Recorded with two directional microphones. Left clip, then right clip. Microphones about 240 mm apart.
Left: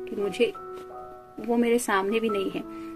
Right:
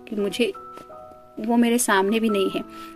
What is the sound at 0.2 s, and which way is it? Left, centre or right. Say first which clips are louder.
Speech: right 2 dB; right.